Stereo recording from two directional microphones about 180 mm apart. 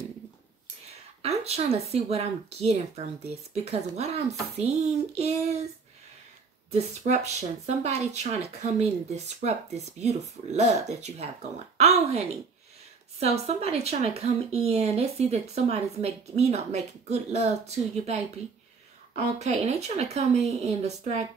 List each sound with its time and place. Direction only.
1.2 s speech: 35° right (ahead or behind)
6.7 s speech: 40° right (ahead or behind)
13.2 s speech: 35° right (ahead or behind)
19.3 s speech: 40° right (ahead or behind)